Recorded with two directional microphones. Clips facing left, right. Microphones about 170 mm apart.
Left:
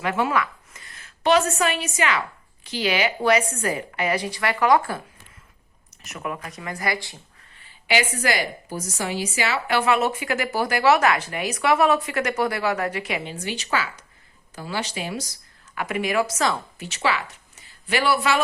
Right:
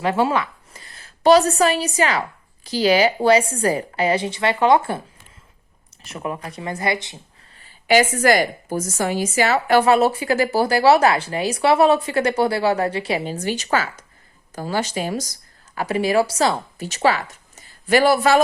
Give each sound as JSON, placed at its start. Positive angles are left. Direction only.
{"t": 0.0, "sound": "a woman's voice", "side_deg": -30}
{"t": 7.6, "sound": "a woman's voice", "side_deg": -45}